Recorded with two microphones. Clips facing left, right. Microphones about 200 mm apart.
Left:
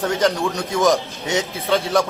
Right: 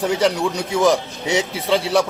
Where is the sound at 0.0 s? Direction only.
15° right (ahead or behind).